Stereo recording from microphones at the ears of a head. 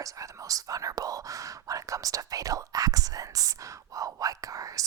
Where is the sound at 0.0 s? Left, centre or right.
Right.